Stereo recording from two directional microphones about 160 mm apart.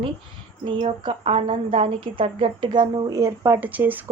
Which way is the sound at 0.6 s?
30° right (ahead or behind).